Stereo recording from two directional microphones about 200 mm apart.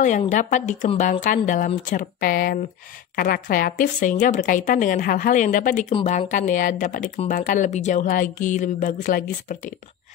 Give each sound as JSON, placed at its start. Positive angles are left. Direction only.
{"t": 0.3, "sound": "speech", "side_deg": 40}
{"t": 5.9, "sound": "speech", "side_deg": 30}